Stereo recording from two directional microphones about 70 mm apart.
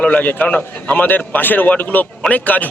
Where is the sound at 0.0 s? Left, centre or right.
Left.